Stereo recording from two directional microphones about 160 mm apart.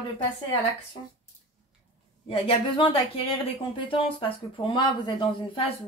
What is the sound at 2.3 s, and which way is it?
Speech, 35° left (ahead or behind).